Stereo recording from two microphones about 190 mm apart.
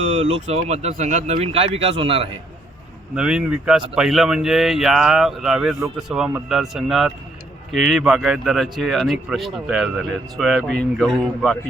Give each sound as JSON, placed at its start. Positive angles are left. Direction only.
{"t": 0.4, "sound": "speech", "side_deg": -35}
{"t": 3.2, "sound": "speech", "side_deg": -5}